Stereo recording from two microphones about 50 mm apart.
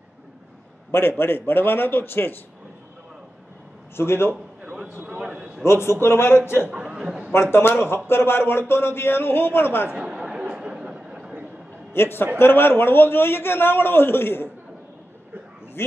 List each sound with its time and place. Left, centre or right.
0.9 s a man's voice: left
3.9 s a man's voice: left
5.3 s a sound: right
5.6 s a man's voice: left
6.7 s a sound: right
7.5 s a man's voice: left
9.8 s chatter: centre
10.4 s a sound: centre
11.9 s a man's voice: left